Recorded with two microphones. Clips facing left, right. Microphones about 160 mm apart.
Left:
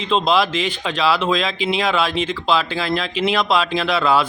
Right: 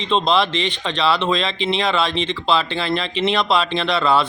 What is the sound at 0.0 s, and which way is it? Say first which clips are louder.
Speech: even; 5° left (ahead or behind).